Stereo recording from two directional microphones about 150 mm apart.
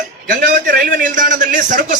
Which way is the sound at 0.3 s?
75° right (ahead or behind).